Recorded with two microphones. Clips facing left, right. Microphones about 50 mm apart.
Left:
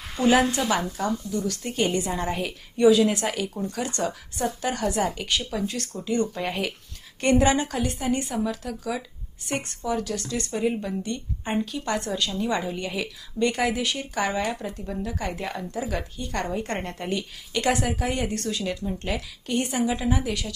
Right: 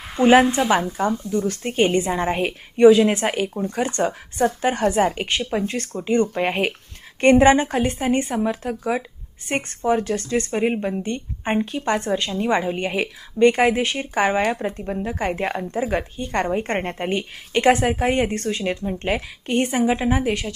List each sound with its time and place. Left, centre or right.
0.1 s a woman's voice: right